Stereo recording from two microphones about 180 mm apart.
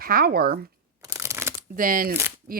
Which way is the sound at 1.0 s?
15° right (ahead or behind).